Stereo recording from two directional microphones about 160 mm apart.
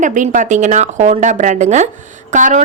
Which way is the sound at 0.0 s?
50° right (ahead or behind).